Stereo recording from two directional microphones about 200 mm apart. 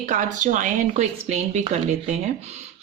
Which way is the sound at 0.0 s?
40° right (ahead or behind).